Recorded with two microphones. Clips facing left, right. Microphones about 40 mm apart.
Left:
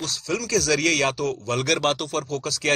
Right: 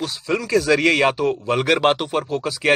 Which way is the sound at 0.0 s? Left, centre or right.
Right.